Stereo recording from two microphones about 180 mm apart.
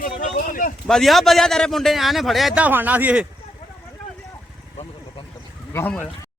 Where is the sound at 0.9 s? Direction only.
Centre (ahead or behind).